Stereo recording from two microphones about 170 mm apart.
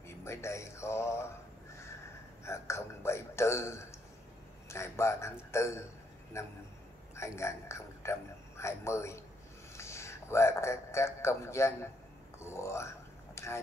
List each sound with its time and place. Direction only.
0.2 s speech: 15° left (ahead or behind)
2.4 s a man's voice: 15° left (ahead or behind)
12.4 s a sound: 15° left (ahead or behind)